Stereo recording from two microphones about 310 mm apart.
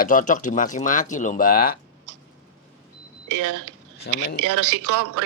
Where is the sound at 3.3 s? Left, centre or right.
Right.